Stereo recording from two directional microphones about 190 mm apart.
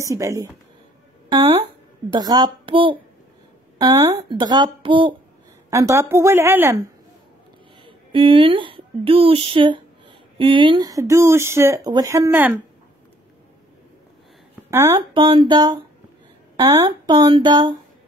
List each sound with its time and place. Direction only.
0.0 s speech: 15° right (ahead or behind)
1.3 s a woman's voice: 30° right (ahead or behind)
5.7 s speech: 15° right (ahead or behind)
7.8 s speech: 25° right (ahead or behind); by 12.5 s 10° right (ahead or behind)
14.7 s a woman's voice: 15° right (ahead or behind)
15.0 s speech: 25° right (ahead or behind)